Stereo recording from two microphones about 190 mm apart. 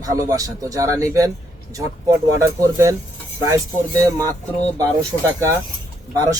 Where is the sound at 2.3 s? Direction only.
15° right (ahead or behind).